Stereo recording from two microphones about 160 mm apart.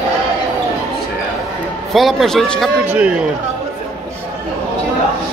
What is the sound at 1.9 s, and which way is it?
A man's voice, centre (ahead or behind).